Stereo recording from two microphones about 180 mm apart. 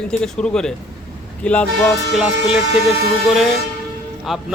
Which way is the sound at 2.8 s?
Centre (ahead or behind).